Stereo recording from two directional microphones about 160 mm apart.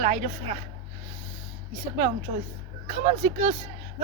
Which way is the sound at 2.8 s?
45° right (ahead or behind).